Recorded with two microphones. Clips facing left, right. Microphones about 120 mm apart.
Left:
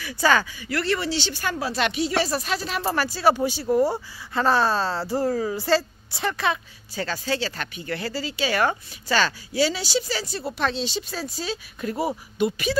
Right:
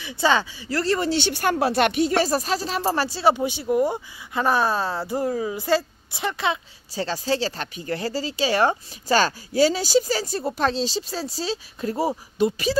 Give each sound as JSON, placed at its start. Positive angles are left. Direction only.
{"t": 0.0, "sound": "speech", "side_deg": -25}
{"t": 6.9, "sound": "speech", "side_deg": -30}